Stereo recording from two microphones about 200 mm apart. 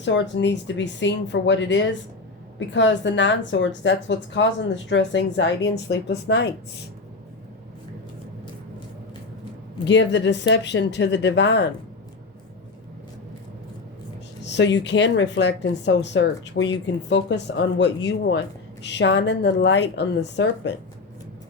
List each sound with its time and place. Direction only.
0.0 s a woman's voice: 65° left (ahead or behind)
9.9 s a woman's voice: 60° left (ahead or behind)
14.4 s a woman's voice: 60° left (ahead or behind)